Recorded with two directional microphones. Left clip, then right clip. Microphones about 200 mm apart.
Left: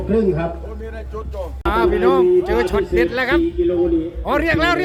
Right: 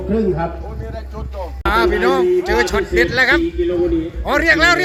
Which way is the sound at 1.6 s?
5° left (ahead or behind).